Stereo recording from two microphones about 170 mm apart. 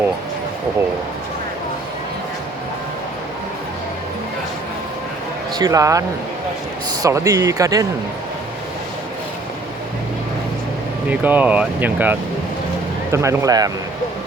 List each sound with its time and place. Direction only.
5.5 s speech: 20° right (ahead or behind)
11.1 s speech: 10° right (ahead or behind)